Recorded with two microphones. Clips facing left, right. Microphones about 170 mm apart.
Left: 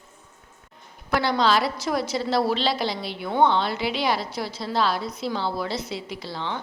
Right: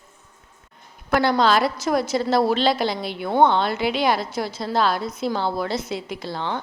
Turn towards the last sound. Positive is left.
turn(degrees=-50)  # may be behind; listen again after turning